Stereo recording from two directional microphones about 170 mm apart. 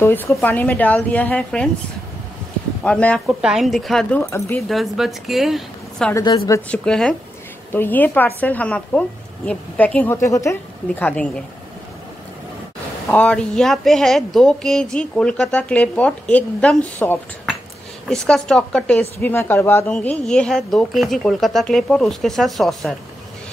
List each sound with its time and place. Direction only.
0.0 s a woman's voice: 15° left (ahead or behind)
2.8 s a woman's voice: 5° left (ahead or behind)
3.3 s speech: 5° right (ahead or behind)
4.2 s a woman's voice: 15° left (ahead or behind)
4.6 s a woman's voice: centre (ahead or behind)
13.1 s speech: 5° left (ahead or behind)